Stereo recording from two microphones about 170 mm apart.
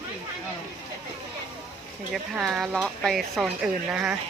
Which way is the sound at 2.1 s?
Centre (ahead or behind).